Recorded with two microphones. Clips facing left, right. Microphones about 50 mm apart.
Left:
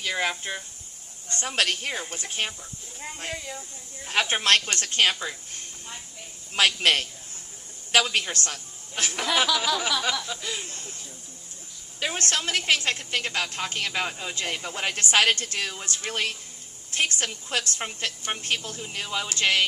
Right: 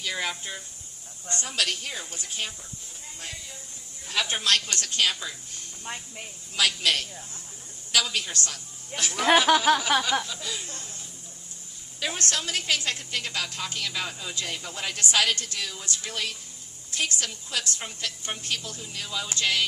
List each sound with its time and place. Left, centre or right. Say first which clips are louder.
0.0 s speech: left 3 dB; left
1.4 s a woman's voice: left 4 dB; left
4.0 s a woman's voice: left 3 dB; left
5.8 s a woman's voice: right 4 dB; right
6.6 s a woman's voice: left 3 dB; left
9.5 s a woman's voice: right 4 dB; right
10.2 s a woman's voice: left 2 dB; left
12.1 s a woman's voice: left 4 dB; left